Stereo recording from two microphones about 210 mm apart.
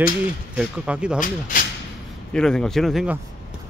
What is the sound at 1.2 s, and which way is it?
Speech, 40° left (ahead or behind).